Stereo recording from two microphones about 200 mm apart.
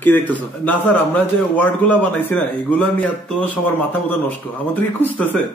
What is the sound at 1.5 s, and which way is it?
Speech, 10° left (ahead or behind).